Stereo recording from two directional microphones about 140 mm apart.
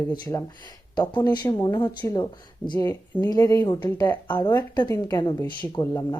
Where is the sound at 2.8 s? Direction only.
15° left (ahead or behind).